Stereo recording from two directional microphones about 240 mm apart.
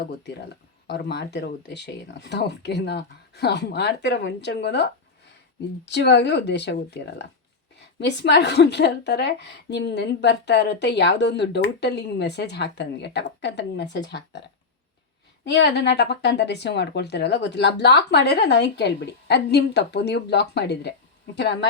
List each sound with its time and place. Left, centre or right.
0.3 s speech: left
15.4 s speech: left